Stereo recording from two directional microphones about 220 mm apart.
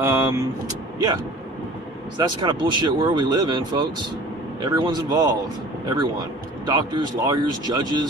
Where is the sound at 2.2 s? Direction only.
20° right (ahead or behind).